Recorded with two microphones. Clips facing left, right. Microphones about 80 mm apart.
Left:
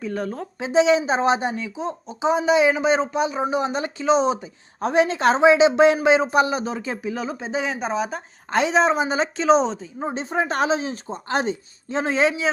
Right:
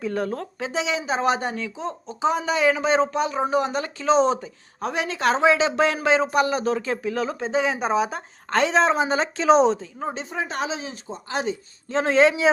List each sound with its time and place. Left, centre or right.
0.0 s a woman's voice: centre
0.6 s speech: left
2.7 s speech: centre
4.0 s speech: centre
4.8 s speech: left; by 8.2 s centre
8.4 s a woman's voice: centre
10.2 s speech: left
11.9 s a woman's voice: centre